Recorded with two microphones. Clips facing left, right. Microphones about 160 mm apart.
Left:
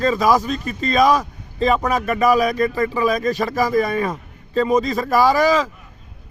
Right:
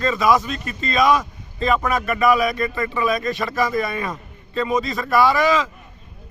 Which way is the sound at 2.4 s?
40° left (ahead or behind).